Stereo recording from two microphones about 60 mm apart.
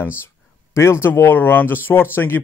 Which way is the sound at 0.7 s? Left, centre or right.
Left.